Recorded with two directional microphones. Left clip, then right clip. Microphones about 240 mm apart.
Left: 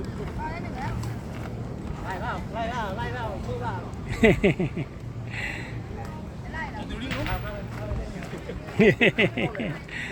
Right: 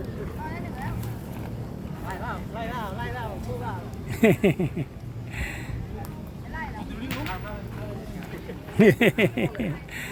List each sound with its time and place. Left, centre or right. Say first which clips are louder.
2.0 s vehicle: left 2 dB; centre
4.1 s speech: left 1 dB; centre
8.8 s speech: even; right